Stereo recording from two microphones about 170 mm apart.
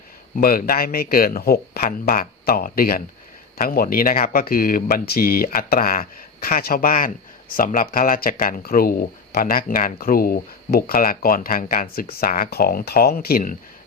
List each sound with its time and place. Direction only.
0.4 s speech: 55° left (ahead or behind)